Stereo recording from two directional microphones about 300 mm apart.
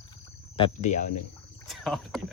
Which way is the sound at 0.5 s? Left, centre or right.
Left.